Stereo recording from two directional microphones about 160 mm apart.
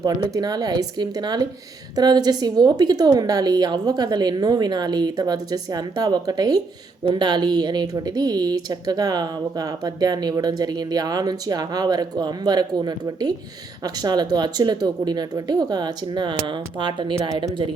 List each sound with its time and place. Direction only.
0.0 s speech: 25° right (ahead or behind)